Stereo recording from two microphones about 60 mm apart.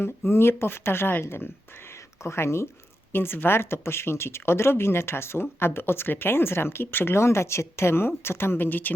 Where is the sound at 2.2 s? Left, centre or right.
Left.